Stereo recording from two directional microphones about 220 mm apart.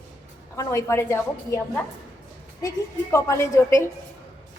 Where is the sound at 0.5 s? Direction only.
10° left (ahead or behind).